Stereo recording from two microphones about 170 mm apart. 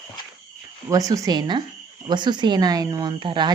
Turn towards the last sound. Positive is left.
turn(degrees=-30)  # may be behind; listen again after turning